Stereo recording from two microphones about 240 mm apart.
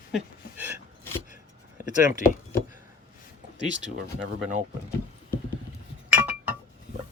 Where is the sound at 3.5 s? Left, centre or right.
Right.